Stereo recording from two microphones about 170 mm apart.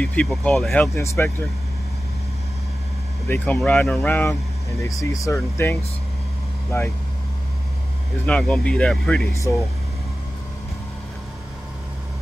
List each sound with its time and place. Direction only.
0.0 s speech: 5° left (ahead or behind)
3.3 s speech: 10° left (ahead or behind)
4.8 s speech: 20° left (ahead or behind)
8.3 s speech: 5° left (ahead or behind)